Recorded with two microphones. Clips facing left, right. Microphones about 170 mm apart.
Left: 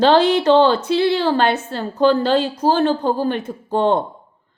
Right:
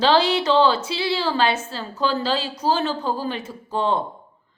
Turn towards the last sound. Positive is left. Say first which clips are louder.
# left 6 dB
turn(degrees=55)  # may be behind; listen again after turning